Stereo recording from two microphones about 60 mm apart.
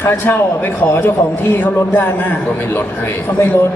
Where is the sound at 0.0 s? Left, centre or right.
Left.